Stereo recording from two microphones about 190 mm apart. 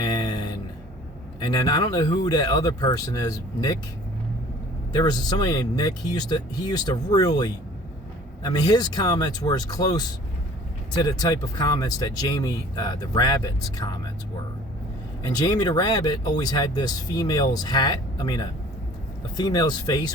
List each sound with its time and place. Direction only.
0.0 s a sound: 20° left (ahead or behind)
1.5 s speech: 20° left (ahead or behind)
4.9 s speech: 20° left (ahead or behind)
15.2 s speech: 20° left (ahead or behind)